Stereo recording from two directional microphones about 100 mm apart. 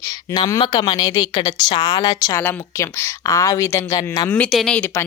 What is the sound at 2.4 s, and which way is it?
Speech, 25° left (ahead or behind).